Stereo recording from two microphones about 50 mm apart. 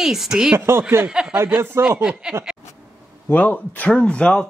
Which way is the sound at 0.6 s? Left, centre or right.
Right.